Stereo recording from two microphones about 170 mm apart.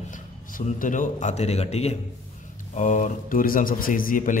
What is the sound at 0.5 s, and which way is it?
A man's voice, 50° left (ahead or behind).